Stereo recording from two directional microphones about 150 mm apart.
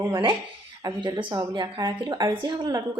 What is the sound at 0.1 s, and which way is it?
Speech, 35° right (ahead or behind).